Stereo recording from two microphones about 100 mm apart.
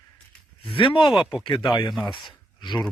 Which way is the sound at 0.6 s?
60° left (ahead or behind).